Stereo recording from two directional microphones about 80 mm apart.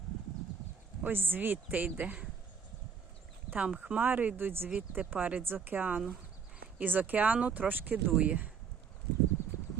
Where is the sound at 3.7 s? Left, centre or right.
Centre.